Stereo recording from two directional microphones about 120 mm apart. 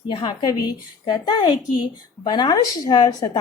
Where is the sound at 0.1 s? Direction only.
40° left (ahead or behind).